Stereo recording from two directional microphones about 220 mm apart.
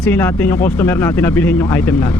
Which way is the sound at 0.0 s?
5° left (ahead or behind).